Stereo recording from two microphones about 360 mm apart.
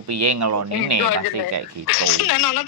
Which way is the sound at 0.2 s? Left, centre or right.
Right.